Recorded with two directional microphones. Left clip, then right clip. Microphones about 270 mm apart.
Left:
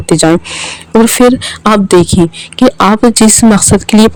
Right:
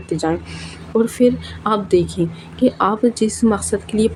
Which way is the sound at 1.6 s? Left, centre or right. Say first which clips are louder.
Left 9 dB; left.